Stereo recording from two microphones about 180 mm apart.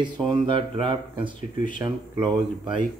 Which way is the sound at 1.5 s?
45° left (ahead or behind).